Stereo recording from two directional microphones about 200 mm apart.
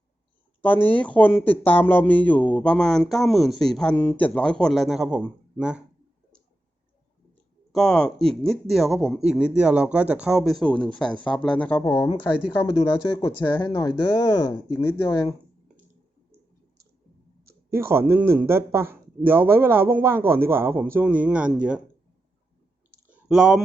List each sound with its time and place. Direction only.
0.6 s speech: 10° left (ahead or behind)
7.7 s speech: centre (ahead or behind)
17.7 s speech: 15° right (ahead or behind)
23.0 s a sound: 5° right (ahead or behind)